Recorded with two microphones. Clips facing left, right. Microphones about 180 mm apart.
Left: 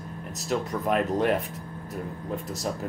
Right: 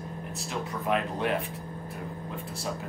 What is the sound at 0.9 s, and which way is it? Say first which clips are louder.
Speech: left 5 dB; 45° left (ahead or behind).